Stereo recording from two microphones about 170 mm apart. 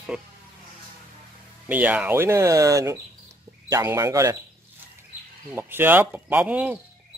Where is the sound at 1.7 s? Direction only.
10° right (ahead or behind).